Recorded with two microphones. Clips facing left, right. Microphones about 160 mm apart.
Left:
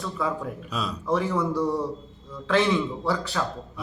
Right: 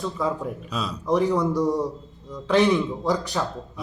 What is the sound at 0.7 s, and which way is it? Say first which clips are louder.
Speech: even; centre (ahead or behind).